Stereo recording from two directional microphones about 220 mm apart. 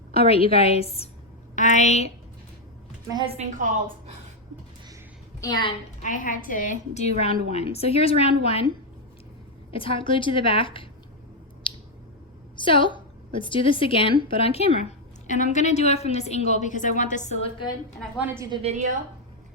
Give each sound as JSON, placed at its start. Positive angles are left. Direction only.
{"t": 0.1, "sound": "a woman's voice", "side_deg": 25}
{"t": 3.1, "sound": "a woman's voice", "side_deg": -20}
{"t": 3.6, "sound": "a woman's voice", "side_deg": -35}
{"t": 5.4, "sound": "a woman's voice", "side_deg": 20}
{"t": 6.0, "sound": "a woman's voice", "side_deg": 35}
{"t": 9.7, "sound": "a woman's voice", "side_deg": 25}
{"t": 11.6, "sound": "squish", "side_deg": 25}
{"t": 12.5, "sound": "a woman's voice", "side_deg": 20}
{"t": 18.2, "sound": "a woman's voice", "side_deg": -10}
{"t": 18.5, "sound": "a woman's voice", "side_deg": -30}